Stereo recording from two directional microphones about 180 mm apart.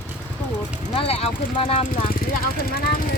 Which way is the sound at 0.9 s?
35° left (ahead or behind).